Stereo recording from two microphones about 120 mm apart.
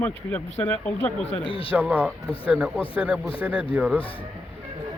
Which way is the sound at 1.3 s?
50° left (ahead or behind).